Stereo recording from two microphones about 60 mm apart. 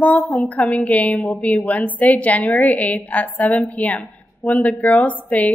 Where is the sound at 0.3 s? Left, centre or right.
Left.